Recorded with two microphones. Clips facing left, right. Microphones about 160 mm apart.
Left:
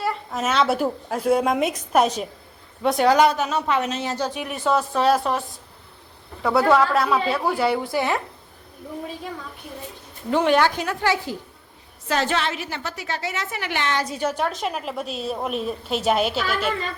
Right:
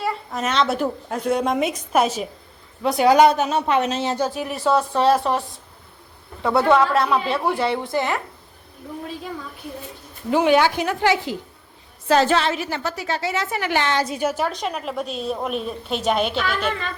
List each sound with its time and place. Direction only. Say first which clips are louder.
0.0 s a woman's voice: even; centre (ahead or behind)
3.1 s speech: right 5 dB; 20° right (ahead or behind)
4.4 s a woman's voice: even; centre (ahead or behind)
10.2 s speech: right 2 dB; 5° right (ahead or behind)
10.8 s speech: right 3 dB; 20° right (ahead or behind)
12.0 s a woman's voice: right 6 dB; 35° right (ahead or behind)
14.1 s a woman's voice: right 1 dB; 10° right (ahead or behind)